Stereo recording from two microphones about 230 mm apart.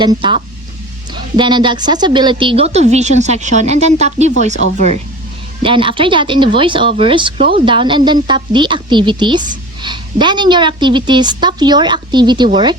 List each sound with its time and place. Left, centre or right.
0.0 s speech: centre